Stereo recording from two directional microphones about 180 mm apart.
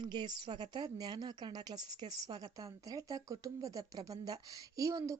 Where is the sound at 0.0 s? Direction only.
25° right (ahead or behind).